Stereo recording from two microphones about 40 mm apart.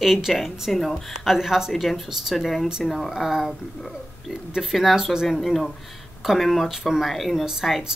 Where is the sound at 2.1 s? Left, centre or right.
Centre.